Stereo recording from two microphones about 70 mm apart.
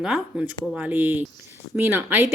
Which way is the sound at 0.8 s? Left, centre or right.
Right.